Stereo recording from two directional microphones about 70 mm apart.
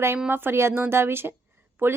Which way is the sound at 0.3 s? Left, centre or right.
Right.